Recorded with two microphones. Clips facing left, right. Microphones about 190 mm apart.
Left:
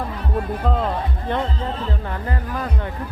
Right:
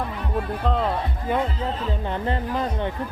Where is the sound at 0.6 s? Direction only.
Centre (ahead or behind).